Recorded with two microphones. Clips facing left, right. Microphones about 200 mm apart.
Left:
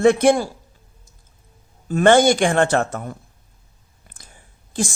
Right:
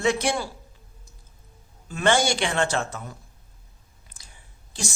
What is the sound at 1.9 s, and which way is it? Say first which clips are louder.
Speech: left 9 dB; 55° left (ahead or behind).